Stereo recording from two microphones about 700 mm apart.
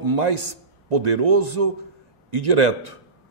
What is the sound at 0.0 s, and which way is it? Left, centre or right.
A man's voice, right.